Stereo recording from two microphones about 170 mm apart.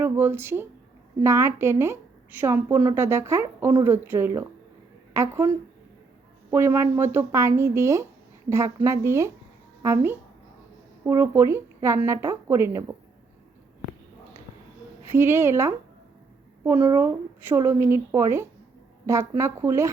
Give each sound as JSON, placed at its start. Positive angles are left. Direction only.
{"t": 0.0, "sound": "a woman's voice", "side_deg": -15}
{"t": 6.5, "sound": "a woman's voice", "side_deg": -15}
{"t": 15.0, "sound": "a woman's voice", "side_deg": -15}